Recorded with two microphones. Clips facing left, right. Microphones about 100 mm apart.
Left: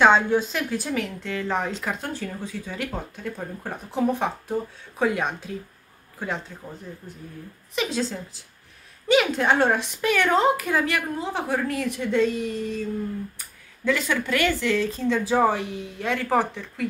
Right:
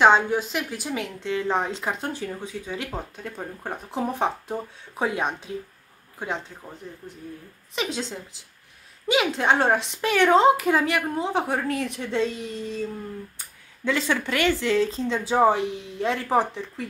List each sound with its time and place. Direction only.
0.0 s speech: 15° right (ahead or behind)
7.7 s speech: 20° right (ahead or behind)